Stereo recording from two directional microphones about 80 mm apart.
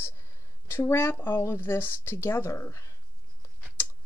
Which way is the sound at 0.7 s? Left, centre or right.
Left.